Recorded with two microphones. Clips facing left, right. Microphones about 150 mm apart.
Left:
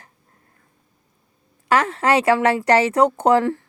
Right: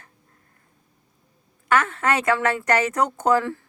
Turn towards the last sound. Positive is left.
turn(degrees=30)  # may be behind; listen again after turning